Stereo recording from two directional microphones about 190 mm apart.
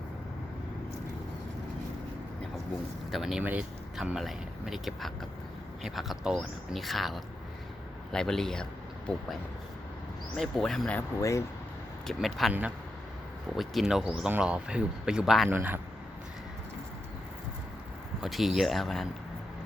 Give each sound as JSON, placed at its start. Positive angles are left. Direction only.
{"t": 3.1, "sound": "speech", "side_deg": 0}
{"t": 10.3, "sound": "speech", "side_deg": 0}
{"t": 11.2, "sound": "speech", "side_deg": 15}
{"t": 12.0, "sound": "speech", "side_deg": 0}
{"t": 18.2, "sound": "speech", "side_deg": 0}